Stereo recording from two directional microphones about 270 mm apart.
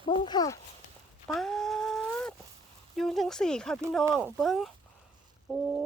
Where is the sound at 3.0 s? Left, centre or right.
Centre.